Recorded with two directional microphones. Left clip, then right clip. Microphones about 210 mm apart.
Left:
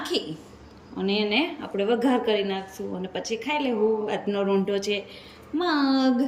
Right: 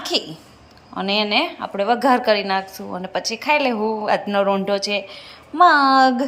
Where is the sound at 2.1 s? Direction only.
30° right (ahead or behind).